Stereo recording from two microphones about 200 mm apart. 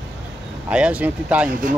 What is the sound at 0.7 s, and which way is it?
Speech, 5° right (ahead or behind).